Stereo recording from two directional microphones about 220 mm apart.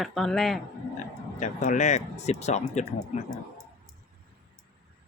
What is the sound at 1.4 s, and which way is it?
Speech, 35° left (ahead or behind).